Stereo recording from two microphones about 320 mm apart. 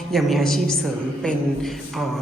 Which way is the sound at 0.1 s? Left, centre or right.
Centre.